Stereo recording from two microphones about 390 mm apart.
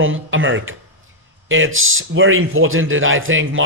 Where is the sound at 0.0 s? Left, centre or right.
Right.